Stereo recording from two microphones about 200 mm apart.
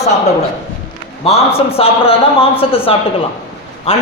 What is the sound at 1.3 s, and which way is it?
A man's voice, 30° left (ahead or behind).